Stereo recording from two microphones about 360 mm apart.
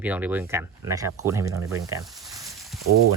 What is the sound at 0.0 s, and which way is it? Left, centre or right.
Speech, centre.